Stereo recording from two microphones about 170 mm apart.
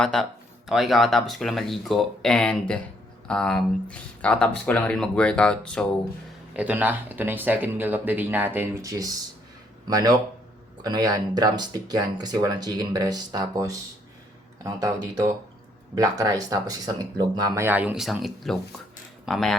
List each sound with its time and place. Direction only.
0.0 s speech: 5° left (ahead or behind)
6.5 s speech: 10° right (ahead or behind)